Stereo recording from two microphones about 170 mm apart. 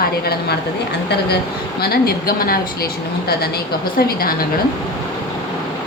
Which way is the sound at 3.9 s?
60° left (ahead or behind).